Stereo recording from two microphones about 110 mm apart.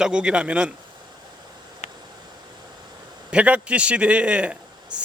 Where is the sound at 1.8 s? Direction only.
90° left.